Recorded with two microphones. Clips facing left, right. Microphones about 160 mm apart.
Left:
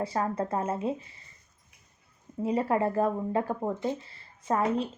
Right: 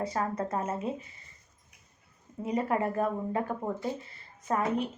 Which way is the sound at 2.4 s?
30° left (ahead or behind).